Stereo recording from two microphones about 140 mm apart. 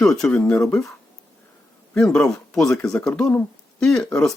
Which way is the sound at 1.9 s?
5° left (ahead or behind).